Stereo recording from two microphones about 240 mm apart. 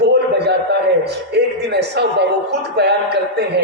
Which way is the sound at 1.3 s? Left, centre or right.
Right.